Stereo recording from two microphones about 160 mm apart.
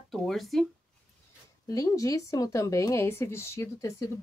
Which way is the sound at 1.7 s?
20° left (ahead or behind).